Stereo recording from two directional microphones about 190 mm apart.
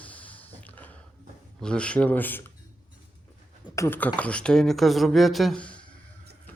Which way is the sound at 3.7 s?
10° left (ahead or behind).